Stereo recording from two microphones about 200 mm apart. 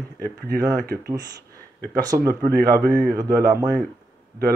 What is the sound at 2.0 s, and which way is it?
Speech, 15° right (ahead or behind).